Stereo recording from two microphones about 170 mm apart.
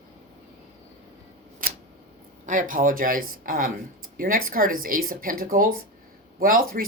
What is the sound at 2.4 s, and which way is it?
Speech, 50° right (ahead or behind).